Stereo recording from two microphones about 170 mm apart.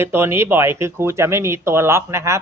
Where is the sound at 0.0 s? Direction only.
15° right (ahead or behind).